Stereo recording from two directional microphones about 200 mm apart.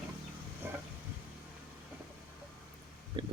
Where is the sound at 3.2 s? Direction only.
25° right (ahead or behind).